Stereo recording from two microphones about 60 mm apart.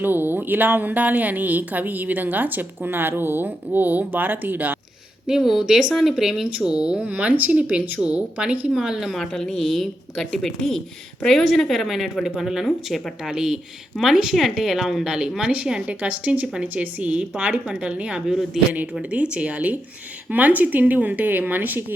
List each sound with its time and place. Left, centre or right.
0.0 s a woman's voice: right
5.2 s speech: centre
8.7 s speech: centre
9.1 s a woman's voice: centre
18.3 s speech: centre
19.1 s speech: centre